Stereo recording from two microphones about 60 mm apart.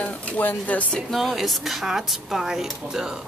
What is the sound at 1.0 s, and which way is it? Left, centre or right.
Speech, centre.